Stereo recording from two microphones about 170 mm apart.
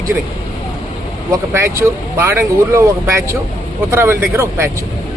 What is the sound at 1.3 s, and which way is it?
Speech, 15° right (ahead or behind).